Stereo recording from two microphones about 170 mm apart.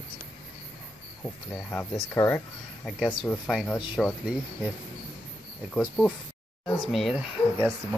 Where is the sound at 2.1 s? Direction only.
15° left (ahead or behind); by 4.7 s centre (ahead or behind).